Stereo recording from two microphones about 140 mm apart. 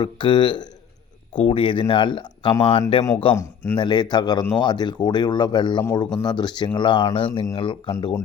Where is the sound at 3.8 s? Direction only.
30° left (ahead or behind).